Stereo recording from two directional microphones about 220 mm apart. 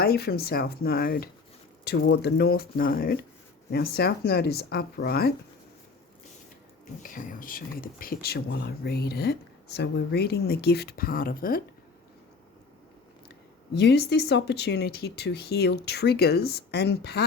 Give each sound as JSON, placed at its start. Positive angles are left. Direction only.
{"t": 0.0, "sound": "speech", "side_deg": 45}
{"t": 7.0, "sound": "speech", "side_deg": 40}
{"t": 13.7, "sound": "speech", "side_deg": 50}